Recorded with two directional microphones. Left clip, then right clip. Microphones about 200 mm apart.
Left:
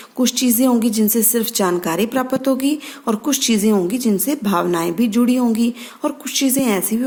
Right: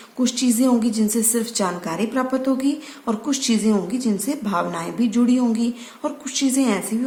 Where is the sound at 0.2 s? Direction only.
45° left (ahead or behind).